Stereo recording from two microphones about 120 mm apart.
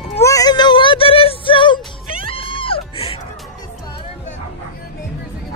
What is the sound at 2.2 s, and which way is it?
Music, 50° left (ahead or behind).